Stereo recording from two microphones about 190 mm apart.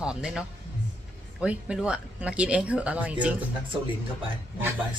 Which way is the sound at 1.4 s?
5° right (ahead or behind).